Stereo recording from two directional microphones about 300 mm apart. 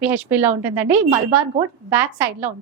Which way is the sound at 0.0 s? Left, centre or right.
Centre.